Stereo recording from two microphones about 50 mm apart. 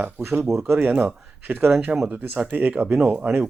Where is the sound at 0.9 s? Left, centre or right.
Right.